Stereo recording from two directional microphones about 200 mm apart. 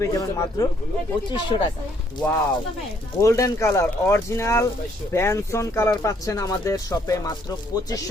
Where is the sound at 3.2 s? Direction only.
15° left (ahead or behind).